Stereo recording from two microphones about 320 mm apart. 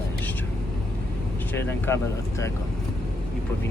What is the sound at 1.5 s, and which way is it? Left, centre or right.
Speech, centre.